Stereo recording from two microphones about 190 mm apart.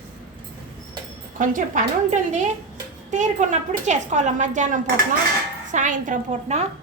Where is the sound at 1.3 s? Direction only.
45° right (ahead or behind).